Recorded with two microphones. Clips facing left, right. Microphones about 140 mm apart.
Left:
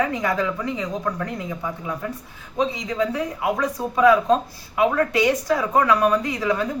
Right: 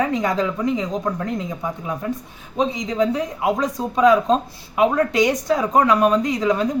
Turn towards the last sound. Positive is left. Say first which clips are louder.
# right 3 dB
turn(degrees=-20)  # may be behind; listen again after turning